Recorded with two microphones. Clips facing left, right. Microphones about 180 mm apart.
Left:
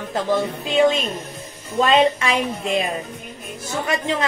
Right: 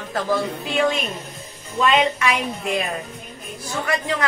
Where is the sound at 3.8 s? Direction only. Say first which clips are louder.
Left 1 dB; 25° left (ahead or behind).